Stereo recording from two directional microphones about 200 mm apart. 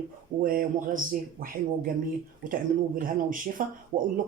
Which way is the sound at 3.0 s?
45° right (ahead or behind).